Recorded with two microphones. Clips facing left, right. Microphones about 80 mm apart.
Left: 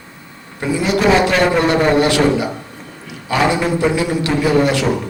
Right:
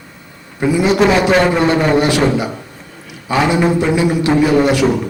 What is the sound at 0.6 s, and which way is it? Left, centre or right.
A man's voice, centre.